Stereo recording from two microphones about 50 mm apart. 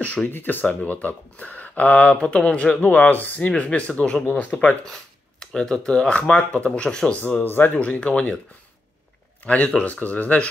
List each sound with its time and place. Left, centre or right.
0.3 s speech: left
2.1 s speech: centre
2.8 s speech: left
4.8 s speech: centre
7.2 s speech: left
7.7 s speech: left
9.4 s speech: left